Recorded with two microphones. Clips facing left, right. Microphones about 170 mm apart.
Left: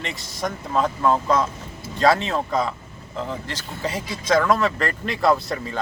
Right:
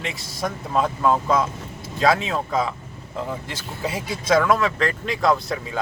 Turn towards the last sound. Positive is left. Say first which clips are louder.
# left 1 dB
turn(degrees=0)  # may be behind; listen again after turning